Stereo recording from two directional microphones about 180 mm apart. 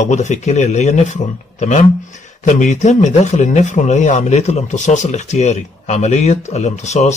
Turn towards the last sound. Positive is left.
turn(degrees=40)  # may be behind; listen again after turning